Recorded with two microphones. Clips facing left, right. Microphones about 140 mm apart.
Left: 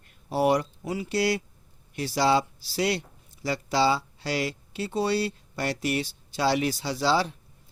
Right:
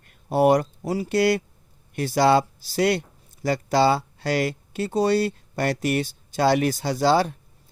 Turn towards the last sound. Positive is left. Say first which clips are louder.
# right 5 dB
turn(degrees=-50)  # may be behind; listen again after turning